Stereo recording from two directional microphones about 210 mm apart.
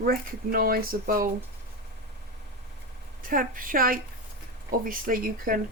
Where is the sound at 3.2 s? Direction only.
40° right (ahead or behind).